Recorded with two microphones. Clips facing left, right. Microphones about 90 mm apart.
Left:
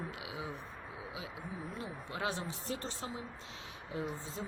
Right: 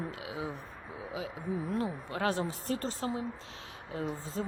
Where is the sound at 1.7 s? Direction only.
45° right (ahead or behind).